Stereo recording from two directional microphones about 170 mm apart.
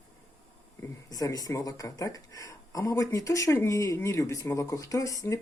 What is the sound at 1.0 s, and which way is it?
Speech, 20° left (ahead or behind).